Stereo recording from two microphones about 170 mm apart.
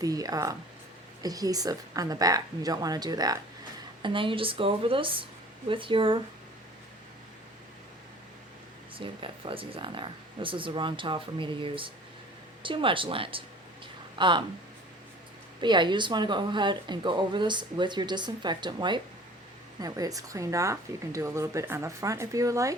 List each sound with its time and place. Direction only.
0.0 s speech: 20° right (ahead or behind)
9.0 s speech: 30° right (ahead or behind)
15.6 s speech: 25° right (ahead or behind)